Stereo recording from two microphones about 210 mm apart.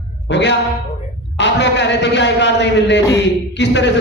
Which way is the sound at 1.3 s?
55° left (ahead or behind).